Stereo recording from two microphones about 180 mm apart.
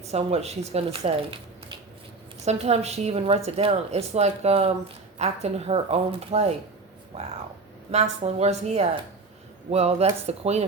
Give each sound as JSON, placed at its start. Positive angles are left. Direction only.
{"t": 0.0, "sound": "speech", "side_deg": -35}
{"t": 7.9, "sound": "speech", "side_deg": -35}